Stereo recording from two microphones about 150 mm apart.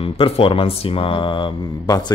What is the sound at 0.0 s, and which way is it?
Mantra, 35° left (ahead or behind).